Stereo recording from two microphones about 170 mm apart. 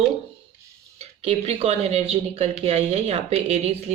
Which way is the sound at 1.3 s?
40° right (ahead or behind).